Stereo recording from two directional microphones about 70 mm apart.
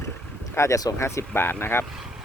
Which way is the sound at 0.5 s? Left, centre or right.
Left.